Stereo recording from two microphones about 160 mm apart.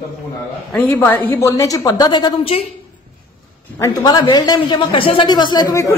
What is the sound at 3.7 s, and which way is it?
A man's voice, 20° left (ahead or behind).